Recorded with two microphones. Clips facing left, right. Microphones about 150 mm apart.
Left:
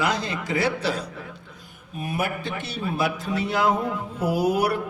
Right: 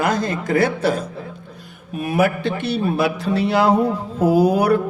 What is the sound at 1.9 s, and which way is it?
A man's voice, 65° right (ahead or behind).